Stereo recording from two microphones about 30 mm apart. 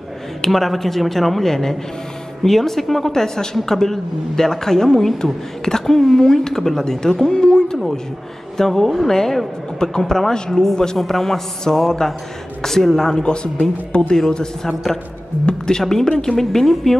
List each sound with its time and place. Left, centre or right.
0.4 s a woman's voice: centre
1.5 s a woman's voice: centre
3.1 s a woman's voice: centre
8.5 s a woman's voice: centre
10.6 s a man's voice: left
11.0 s a woman's voice: centre
13.2 s a man's voice: left
14.7 s a man's voice: centre